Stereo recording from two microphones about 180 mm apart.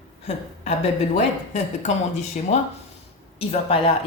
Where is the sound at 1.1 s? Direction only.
40° left (ahead or behind).